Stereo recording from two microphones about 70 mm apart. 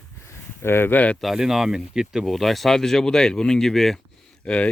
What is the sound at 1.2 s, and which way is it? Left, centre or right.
Speech, centre.